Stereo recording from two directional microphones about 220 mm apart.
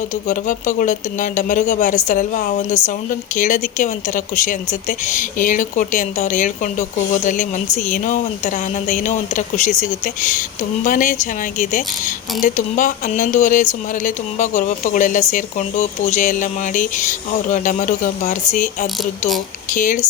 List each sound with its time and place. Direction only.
0.3 s a woman's voice: 35° left (ahead or behind)
10.8 s a woman's voice: 35° left (ahead or behind)